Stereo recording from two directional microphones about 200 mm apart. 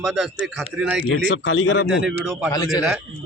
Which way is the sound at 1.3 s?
70° left (ahead or behind).